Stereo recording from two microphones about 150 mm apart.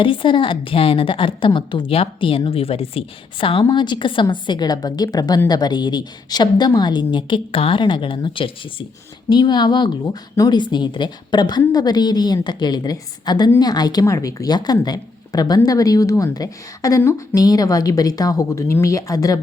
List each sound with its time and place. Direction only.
0.0 s a woman's voice: 35° left (ahead or behind)